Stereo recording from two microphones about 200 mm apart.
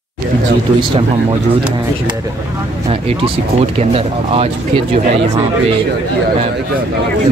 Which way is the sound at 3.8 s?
30° right (ahead or behind).